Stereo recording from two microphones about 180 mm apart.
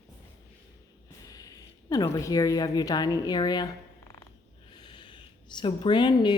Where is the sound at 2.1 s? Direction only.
20° left (ahead or behind).